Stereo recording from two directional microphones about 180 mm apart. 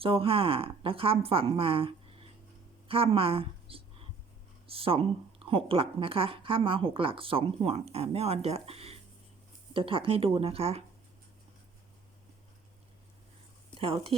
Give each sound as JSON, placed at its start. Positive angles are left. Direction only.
{"t": 0.0, "sound": "a woman's voice", "side_deg": -30}
{"t": 13.7, "sound": "speech", "side_deg": -30}